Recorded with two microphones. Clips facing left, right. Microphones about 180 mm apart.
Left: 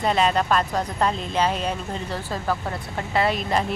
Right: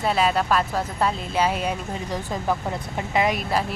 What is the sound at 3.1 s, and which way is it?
Speech, 15° right (ahead or behind).